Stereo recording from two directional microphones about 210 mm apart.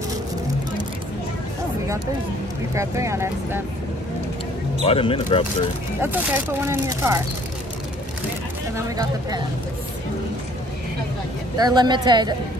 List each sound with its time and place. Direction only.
2.7 s speech: 15° right (ahead or behind)
4.8 s speech: 25° left (ahead or behind)
5.9 s speech: 10° right (ahead or behind)
8.7 s speech: 15° right (ahead or behind)
11.5 s speech: 20° right (ahead or behind)